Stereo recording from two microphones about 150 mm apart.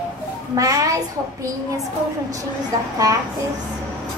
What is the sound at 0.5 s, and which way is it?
Speech, 25° right (ahead or behind).